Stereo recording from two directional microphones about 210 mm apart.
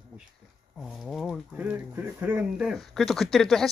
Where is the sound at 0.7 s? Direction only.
Centre (ahead or behind).